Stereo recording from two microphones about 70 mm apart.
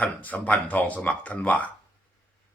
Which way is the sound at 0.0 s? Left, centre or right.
Left.